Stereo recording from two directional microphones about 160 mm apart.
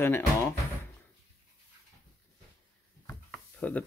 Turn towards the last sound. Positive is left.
turn(degrees=5)  # may be behind; listen again after turning